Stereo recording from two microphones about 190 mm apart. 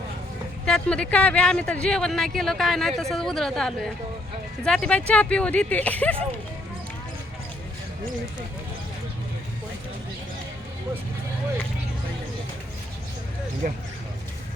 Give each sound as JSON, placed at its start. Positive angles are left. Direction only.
{"t": 0.6, "sound": "speech", "side_deg": 5}
{"t": 13.6, "sound": "speech", "side_deg": -45}